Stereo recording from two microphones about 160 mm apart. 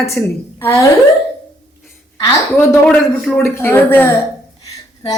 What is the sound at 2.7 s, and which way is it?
Speech, 5° left (ahead or behind).